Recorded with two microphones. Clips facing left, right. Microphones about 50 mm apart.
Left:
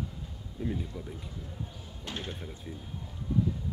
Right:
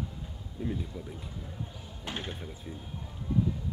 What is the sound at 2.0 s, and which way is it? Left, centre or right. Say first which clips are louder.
Speech: right 1 dB; right.